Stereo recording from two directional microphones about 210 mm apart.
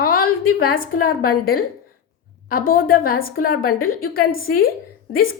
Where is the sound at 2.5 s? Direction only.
45° left (ahead or behind).